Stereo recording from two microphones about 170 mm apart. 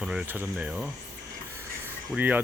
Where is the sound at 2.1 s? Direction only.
10° right (ahead or behind).